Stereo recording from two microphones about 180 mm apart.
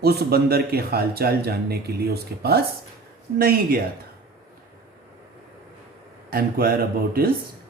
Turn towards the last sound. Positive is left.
turn(degrees=-55)  # may be behind; listen again after turning